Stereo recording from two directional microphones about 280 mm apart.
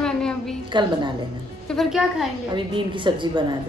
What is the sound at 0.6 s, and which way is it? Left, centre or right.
Speech, centre.